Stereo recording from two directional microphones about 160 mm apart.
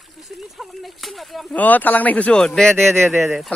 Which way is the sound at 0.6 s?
Centre (ahead or behind).